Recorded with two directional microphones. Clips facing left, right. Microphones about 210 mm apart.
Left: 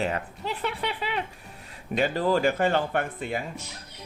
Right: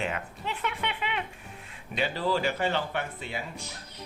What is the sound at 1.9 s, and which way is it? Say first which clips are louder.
Speech: left 5 dB; 45° left (ahead or behind).